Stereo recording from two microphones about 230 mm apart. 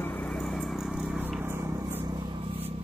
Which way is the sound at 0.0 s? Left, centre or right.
Centre.